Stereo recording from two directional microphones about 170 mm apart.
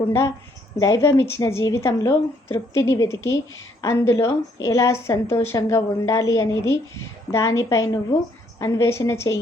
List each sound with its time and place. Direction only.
0.8 s a woman's voice: 20° left (ahead or behind)